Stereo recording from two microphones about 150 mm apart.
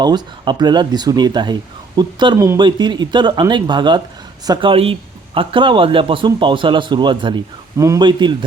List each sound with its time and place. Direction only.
0.0 s speech: 30° right (ahead or behind)